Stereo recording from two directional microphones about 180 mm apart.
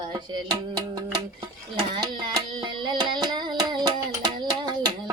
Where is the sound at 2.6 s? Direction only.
25° right (ahead or behind).